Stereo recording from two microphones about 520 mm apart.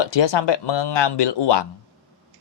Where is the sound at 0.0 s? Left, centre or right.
Left.